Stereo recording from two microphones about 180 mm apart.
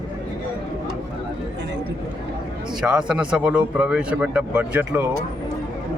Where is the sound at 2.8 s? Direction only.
5° right (ahead or behind).